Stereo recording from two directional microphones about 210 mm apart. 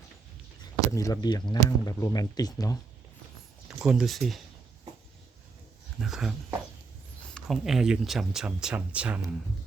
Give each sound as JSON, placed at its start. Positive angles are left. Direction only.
{"t": 0.6, "sound": "speech", "side_deg": 15}
{"t": 3.8, "sound": "speech", "side_deg": -5}
{"t": 6.0, "sound": "speech", "side_deg": -5}
{"t": 7.3, "sound": "speech", "side_deg": 0}